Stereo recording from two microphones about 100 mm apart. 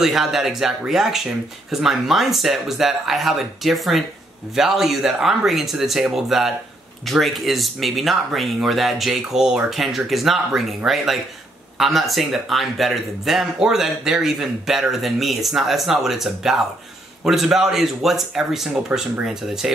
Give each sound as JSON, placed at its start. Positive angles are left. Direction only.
{"t": 0.0, "sound": "speech", "side_deg": -5}
{"t": 11.8, "sound": "speech", "side_deg": 0}